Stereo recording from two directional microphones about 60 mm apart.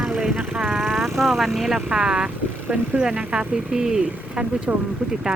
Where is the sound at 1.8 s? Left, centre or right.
Centre.